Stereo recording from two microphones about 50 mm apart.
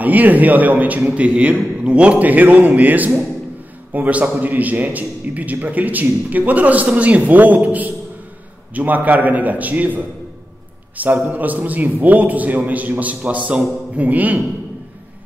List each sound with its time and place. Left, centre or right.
0.0 s a man's voice: right